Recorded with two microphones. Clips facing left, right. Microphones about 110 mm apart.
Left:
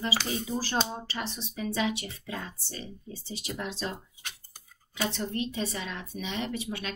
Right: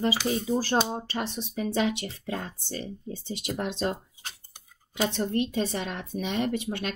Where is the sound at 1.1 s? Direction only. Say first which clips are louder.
Right 4 dB; 50° right (ahead or behind).